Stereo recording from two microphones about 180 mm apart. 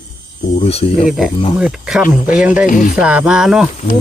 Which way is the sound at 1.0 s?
Centre (ahead or behind).